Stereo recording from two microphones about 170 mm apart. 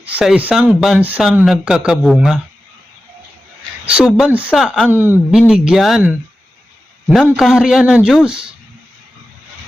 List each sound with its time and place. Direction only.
0.0 s speech: 5° right (ahead or behind)
3.8 s speech: 5° right (ahead or behind)
4.9 s speech: 10° right (ahead or behind)
7.3 s speech: centre (ahead or behind)